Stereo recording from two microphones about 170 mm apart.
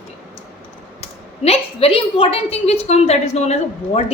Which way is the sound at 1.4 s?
35° left (ahead or behind).